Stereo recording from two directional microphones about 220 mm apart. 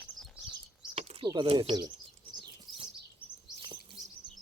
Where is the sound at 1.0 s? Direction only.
25° right (ahead or behind).